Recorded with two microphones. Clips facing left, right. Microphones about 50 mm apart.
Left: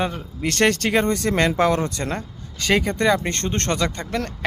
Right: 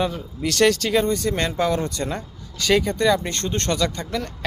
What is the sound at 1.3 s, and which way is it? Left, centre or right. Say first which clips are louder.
Speech: left 3 dB; left.